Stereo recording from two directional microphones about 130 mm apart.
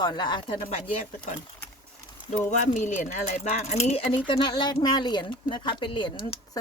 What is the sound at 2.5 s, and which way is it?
Speech, 70° left (ahead or behind).